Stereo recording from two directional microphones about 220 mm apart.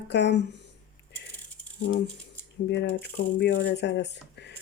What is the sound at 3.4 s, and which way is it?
Speech, 50° left (ahead or behind).